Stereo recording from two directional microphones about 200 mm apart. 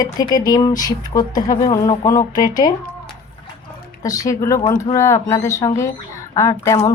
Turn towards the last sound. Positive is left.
turn(degrees=15)  # may be behind; listen again after turning